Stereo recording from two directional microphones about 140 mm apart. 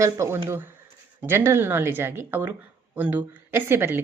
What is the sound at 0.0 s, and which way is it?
Speech, 20° right (ahead or behind).